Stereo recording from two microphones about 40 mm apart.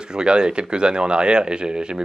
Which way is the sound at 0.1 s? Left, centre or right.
Right.